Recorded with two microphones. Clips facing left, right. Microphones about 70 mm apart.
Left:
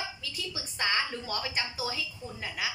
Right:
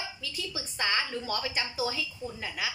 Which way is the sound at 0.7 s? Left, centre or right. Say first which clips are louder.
Even; left.